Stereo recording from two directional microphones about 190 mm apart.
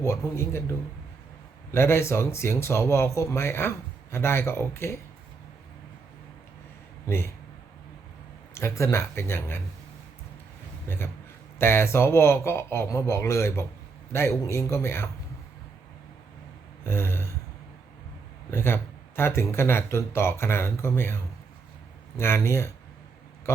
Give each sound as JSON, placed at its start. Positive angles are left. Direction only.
{"t": 0.0, "sound": "speech", "side_deg": 15}
{"t": 1.7, "sound": "speech", "side_deg": 15}
{"t": 8.5, "sound": "speech", "side_deg": 15}
{"t": 10.8, "sound": "a man's voice", "side_deg": 10}
{"t": 16.8, "sound": "speech", "side_deg": 10}
{"t": 18.5, "sound": "speech", "side_deg": 10}
{"t": 22.2, "sound": "speech", "side_deg": 15}